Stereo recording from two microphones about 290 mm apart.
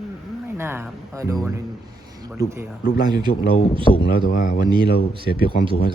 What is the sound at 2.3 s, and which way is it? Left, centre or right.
Speech, centre.